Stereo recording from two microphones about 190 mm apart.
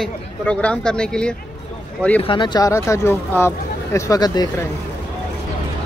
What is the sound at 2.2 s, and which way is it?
Speech, 25° left (ahead or behind).